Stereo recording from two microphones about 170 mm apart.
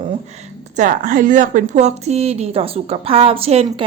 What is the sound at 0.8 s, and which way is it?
A woman's voice, 50° right (ahead or behind).